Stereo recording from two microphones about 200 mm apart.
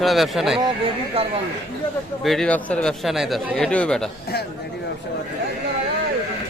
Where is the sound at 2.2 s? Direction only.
Centre (ahead or behind).